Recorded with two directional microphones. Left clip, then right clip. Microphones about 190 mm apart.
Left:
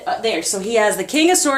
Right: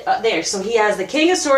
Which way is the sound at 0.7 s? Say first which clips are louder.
Even; 55° left (ahead or behind).